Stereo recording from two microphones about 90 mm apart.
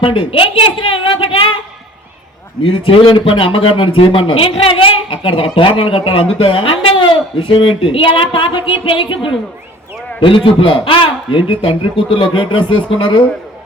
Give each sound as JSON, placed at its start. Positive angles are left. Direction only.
{"t": 0.0, "sound": "a man's voice", "side_deg": 80}
{"t": 2.6, "sound": "a man's voice", "side_deg": 80}